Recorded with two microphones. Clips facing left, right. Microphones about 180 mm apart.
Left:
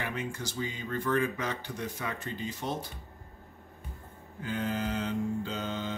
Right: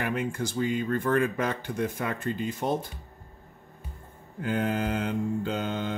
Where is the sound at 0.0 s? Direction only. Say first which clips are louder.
Right 6 dB; 55° right (ahead or behind).